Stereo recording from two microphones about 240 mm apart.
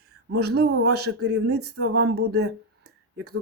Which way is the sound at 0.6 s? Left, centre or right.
Right.